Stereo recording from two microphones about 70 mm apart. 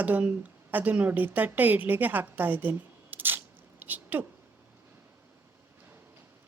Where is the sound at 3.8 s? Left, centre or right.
Right.